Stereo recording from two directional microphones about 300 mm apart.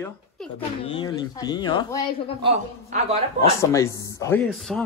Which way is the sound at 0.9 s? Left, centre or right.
Centre.